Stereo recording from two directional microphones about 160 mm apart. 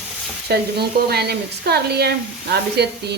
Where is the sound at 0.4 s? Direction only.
85° right.